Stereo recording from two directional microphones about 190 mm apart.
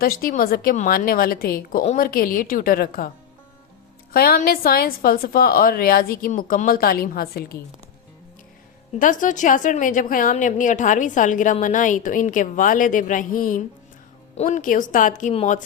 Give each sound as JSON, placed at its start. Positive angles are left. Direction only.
{"t": 0.0, "sound": "a woman's voice", "side_deg": 50}
{"t": 4.1, "sound": "a woman's voice", "side_deg": 50}
{"t": 9.0, "sound": "a woman's voice", "side_deg": 45}